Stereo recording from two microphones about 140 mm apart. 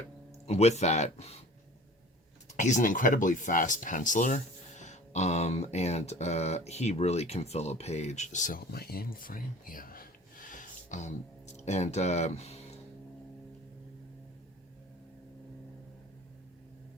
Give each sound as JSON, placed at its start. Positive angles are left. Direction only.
{"t": 0.4, "sound": "speech", "side_deg": 50}
{"t": 2.6, "sound": "speech", "side_deg": 65}